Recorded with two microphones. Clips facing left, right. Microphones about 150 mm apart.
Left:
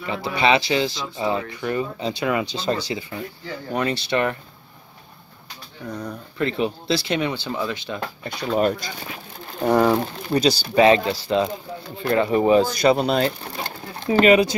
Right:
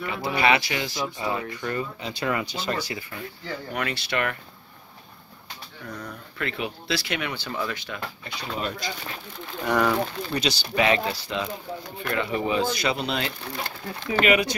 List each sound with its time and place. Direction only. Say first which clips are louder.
0.0 s speech: left 2 dB; 25° left (ahead or behind)
2.0 s speech: left 7 dB; 30° left (ahead or behind)
2.2 s speech: left 3 dB; 20° left (ahead or behind)
2.5 s speech: left 5 dB; 30° left (ahead or behind)
5.9 s speech: left 9 dB; 25° left (ahead or behind)
8.2 s speech: left 13 dB; 50° left (ahead or behind)
9.6 s speech: left 5 dB; 30° left (ahead or behind)